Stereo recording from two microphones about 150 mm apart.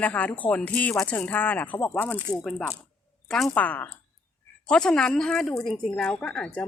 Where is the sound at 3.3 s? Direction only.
5° left (ahead or behind).